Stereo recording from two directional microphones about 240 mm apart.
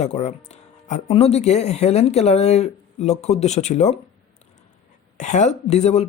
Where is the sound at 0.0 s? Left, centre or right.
Left.